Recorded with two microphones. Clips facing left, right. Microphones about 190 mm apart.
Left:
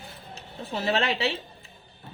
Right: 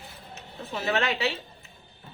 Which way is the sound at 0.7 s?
30° left (ahead or behind).